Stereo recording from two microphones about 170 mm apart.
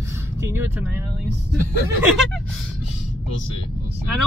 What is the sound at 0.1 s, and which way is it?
Vehicle, 15° right (ahead or behind).